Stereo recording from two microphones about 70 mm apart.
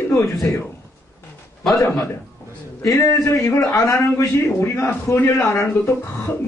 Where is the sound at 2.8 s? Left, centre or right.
Left.